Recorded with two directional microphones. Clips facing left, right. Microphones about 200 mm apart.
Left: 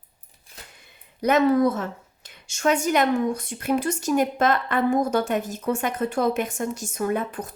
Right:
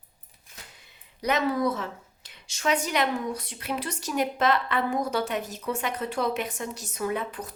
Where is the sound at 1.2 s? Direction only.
50° left (ahead or behind).